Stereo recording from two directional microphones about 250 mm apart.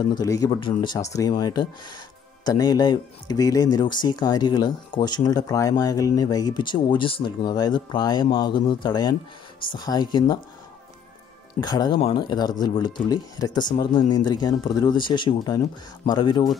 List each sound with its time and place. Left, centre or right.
0.0 s speech: centre
11.6 s speech: centre